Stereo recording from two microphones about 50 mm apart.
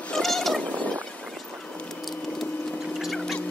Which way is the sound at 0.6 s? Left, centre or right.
Left.